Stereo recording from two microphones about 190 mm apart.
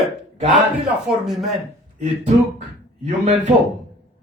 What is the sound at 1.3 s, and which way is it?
Speech, centre (ahead or behind).